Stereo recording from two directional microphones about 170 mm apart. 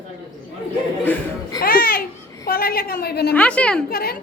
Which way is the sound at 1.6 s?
60° left (ahead or behind).